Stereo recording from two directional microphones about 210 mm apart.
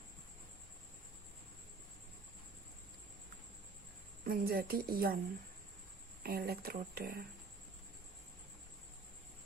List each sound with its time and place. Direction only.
4.2 s speech: 45° right (ahead or behind)
6.2 s speech: 45° right (ahead or behind)